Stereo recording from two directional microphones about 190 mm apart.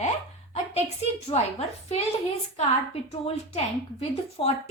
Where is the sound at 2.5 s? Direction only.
30° left (ahead or behind).